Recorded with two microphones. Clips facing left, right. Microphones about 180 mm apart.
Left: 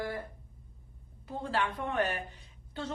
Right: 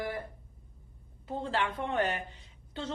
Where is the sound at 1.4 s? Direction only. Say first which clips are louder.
Even; 25° right (ahead or behind).